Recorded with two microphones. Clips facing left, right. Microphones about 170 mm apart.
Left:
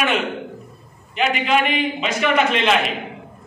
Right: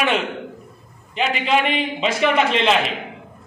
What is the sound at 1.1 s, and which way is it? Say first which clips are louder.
A man's voice: left 1 dB; 30° right (ahead or behind).